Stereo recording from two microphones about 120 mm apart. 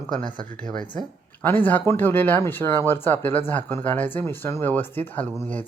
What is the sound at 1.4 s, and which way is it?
Speech, 15° left (ahead or behind).